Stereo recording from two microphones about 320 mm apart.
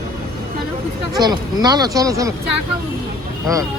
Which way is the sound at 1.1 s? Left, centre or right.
Centre.